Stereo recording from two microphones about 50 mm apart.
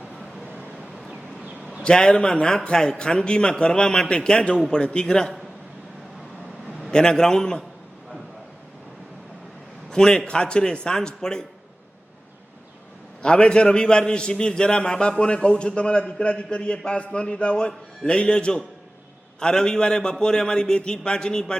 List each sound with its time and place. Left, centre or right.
0.9 s a sound: centre
1.8 s a man's voice: centre
6.9 s a man's voice: centre
9.9 s a man's voice: centre
13.2 s a man's voice: centre